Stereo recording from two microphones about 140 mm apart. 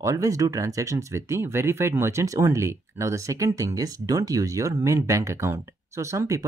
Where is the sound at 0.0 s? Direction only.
25° right (ahead or behind).